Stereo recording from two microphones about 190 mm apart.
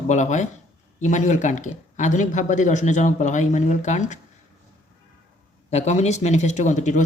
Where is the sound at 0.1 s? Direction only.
40° left (ahead or behind).